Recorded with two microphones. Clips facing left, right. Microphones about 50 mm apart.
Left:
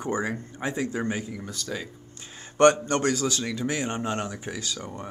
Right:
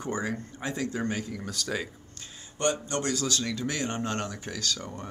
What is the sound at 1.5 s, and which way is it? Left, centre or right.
Speech, centre.